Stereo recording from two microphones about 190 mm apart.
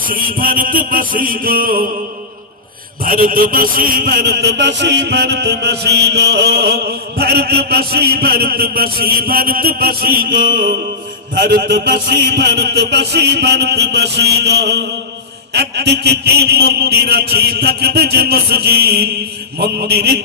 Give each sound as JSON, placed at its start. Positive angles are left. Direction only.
{"t": 0.0, "sound": "a man's voice", "side_deg": -50}
{"t": 3.0, "sound": "a man's voice", "side_deg": -45}